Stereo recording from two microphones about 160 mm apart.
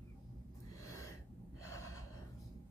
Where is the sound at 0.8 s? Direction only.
20° left (ahead or behind).